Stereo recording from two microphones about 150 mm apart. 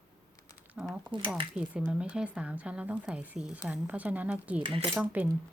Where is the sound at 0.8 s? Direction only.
5° right (ahead or behind).